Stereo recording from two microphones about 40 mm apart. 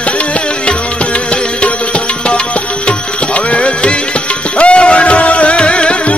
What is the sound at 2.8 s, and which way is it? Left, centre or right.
Music, left.